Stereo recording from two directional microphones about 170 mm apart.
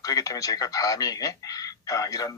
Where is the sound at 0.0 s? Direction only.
20° left (ahead or behind).